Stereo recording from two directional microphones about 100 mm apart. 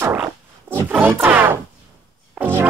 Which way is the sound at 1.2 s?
20° right (ahead or behind).